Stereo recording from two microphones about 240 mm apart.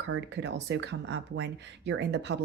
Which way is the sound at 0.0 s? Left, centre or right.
Right.